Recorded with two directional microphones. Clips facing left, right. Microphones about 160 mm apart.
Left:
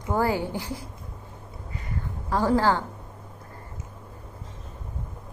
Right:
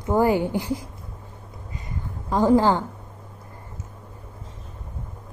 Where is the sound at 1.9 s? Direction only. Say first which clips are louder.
Right 1 dB; 15° right (ahead or behind).